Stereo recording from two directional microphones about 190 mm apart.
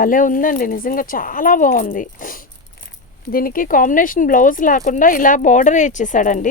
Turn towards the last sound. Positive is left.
turn(degrees=45)  # may be behind; listen again after turning